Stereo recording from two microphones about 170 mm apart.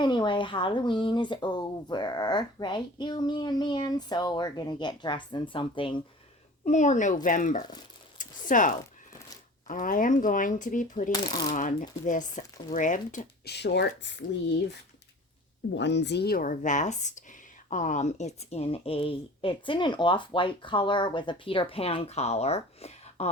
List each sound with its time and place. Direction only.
0.0 s speech: 25° left (ahead or behind)
6.7 s speech: 45° left (ahead or behind)
11.1 s speech: 25° left (ahead or behind)
11.5 s speech: 50° left (ahead or behind)
13.4 s speech: 75° left (ahead or behind); by 14.3 s 90° left
15.7 s speech: 90° left; by 23.3 s 40° left (ahead or behind)